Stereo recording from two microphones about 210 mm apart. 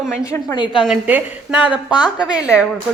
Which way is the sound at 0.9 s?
5° right (ahead or behind).